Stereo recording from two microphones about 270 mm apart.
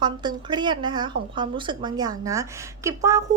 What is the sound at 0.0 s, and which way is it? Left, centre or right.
A woman's voice, centre.